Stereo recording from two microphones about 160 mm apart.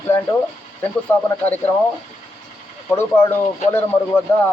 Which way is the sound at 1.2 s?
10° left (ahead or behind).